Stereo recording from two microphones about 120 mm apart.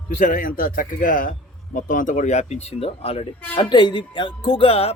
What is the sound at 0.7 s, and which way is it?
Speech, 90° left.